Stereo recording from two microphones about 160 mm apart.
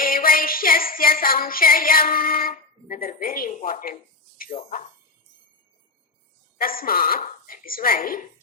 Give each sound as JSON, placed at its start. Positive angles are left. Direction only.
{"t": 0.0, "sound": "music", "side_deg": 65}
{"t": 4.5, "sound": "speech", "side_deg": 40}
{"t": 6.6, "sound": "a woman's voice", "side_deg": 65}